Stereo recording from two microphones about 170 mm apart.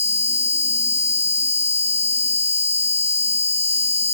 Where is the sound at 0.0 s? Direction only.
70° right (ahead or behind).